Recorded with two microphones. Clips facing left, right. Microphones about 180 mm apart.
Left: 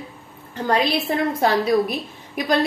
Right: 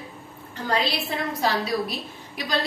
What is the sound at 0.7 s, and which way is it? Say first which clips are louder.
A woman's voice: left 5 dB; 50° left (ahead or behind).